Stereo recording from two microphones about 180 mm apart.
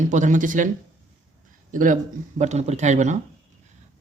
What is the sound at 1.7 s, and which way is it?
A man's voice, 45° right (ahead or behind).